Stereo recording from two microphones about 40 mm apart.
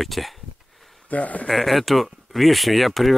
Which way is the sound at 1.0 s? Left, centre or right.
Left.